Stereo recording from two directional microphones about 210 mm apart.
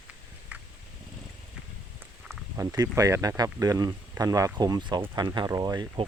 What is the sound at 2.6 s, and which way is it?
Speech, 15° right (ahead or behind).